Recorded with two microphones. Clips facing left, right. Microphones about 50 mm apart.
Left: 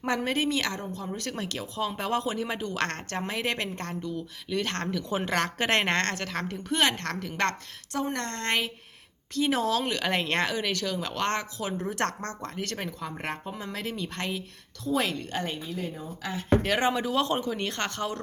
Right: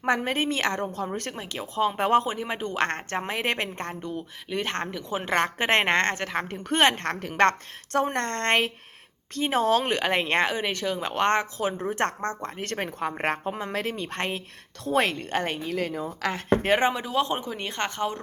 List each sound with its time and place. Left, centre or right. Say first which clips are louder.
0.0 s a woman's voice: right 2 dB; right
1.4 s speech: right 6 dB; right
6.6 s a woman's voice: right 4 dB; right
15.6 s speech: right 6 dB; right
16.6 s speech: right 7 dB; right
16.9 s speech: even; centre